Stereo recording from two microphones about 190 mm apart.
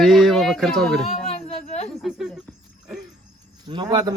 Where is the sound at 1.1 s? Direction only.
35° left (ahead or behind).